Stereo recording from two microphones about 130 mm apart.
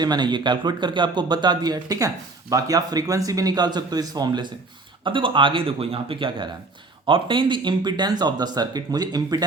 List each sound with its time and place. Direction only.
0.0 s a man's voice: 35° right (ahead or behind)